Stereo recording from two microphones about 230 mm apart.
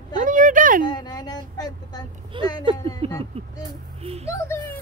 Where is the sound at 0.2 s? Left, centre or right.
Right.